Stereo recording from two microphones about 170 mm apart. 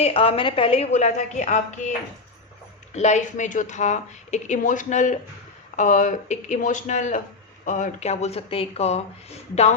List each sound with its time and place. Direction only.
0.0 s speech: 35° left (ahead or behind)
2.9 s speech: 40° left (ahead or behind)